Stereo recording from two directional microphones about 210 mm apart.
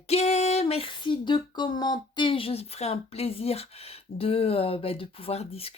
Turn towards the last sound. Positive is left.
turn(degrees=30)  # may be behind; listen again after turning